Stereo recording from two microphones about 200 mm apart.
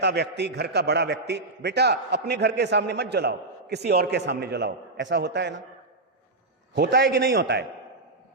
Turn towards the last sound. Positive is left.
turn(degrees=-55)  # may be behind; listen again after turning